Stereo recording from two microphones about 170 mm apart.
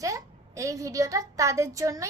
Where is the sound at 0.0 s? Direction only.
20° right (ahead or behind).